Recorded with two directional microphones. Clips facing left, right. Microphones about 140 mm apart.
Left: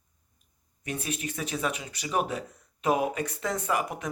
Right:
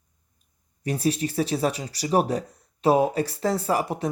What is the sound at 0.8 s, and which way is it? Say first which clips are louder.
Speech: right 9 dB; 35° right (ahead or behind).